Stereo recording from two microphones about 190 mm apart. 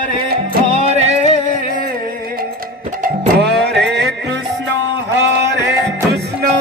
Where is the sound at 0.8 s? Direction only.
35° right (ahead or behind).